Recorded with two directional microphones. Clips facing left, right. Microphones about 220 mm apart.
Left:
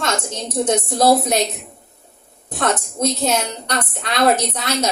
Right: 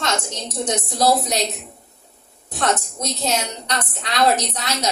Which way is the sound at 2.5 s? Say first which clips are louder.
Left 1 dB; 55° left (ahead or behind).